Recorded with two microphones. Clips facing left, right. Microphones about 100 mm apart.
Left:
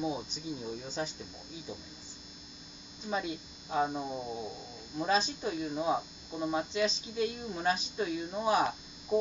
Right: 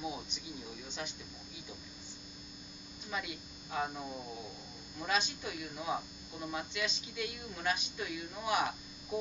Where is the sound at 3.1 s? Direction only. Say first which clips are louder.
Left 6 dB; 30° left (ahead or behind).